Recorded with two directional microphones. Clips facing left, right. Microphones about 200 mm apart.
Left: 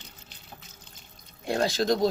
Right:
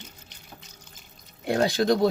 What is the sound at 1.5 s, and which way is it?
Speech, 60° right (ahead or behind).